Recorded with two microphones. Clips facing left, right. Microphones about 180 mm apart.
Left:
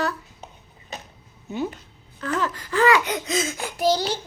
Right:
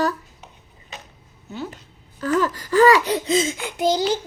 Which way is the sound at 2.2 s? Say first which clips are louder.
Right 5 dB; 40° right (ahead or behind).